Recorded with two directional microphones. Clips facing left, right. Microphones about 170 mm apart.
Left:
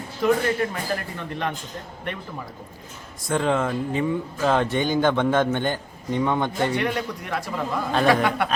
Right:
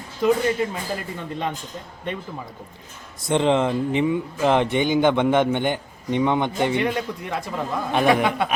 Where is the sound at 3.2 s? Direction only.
20° right (ahead or behind).